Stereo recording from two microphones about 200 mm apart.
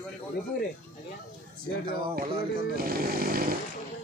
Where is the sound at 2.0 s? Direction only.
45° right (ahead or behind).